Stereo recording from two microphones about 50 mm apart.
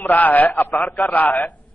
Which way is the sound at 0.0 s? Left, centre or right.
Left.